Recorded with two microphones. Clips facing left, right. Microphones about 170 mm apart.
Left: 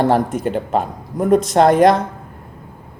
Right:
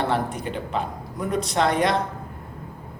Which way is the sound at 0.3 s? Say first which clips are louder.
Left 9 dB; 45° left (ahead or behind).